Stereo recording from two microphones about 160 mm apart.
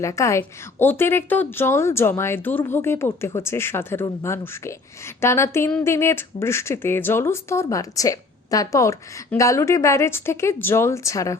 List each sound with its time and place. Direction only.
0.0 s speech: 20° left (ahead or behind)